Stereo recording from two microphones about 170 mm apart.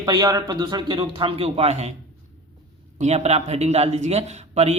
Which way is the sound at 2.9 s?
40° right (ahead or behind).